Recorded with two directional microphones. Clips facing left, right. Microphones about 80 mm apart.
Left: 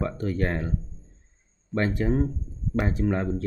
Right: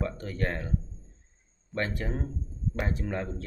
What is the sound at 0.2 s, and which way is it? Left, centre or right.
Speech, left.